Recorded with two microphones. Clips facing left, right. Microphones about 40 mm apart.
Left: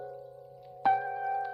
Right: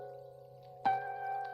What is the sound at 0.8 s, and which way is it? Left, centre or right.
Music, centre.